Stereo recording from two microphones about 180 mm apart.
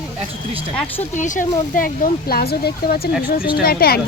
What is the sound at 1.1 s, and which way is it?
Speech, 45° left (ahead or behind).